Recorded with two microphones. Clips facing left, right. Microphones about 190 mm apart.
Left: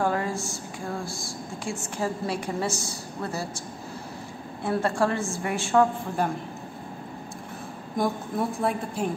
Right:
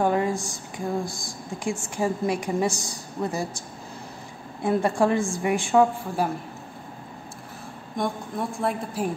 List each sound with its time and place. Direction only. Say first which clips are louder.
0.0 s a woman's voice: right 3 dB; 20° right (ahead or behind)
4.6 s a woman's voice: right 3 dB; 15° right (ahead or behind)
7.9 s a woman's voice: left 2 dB; centre (ahead or behind)